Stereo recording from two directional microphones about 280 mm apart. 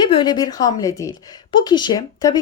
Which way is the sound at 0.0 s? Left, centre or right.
Centre.